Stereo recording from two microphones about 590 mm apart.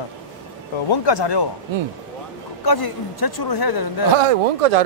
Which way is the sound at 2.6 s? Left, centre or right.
Left.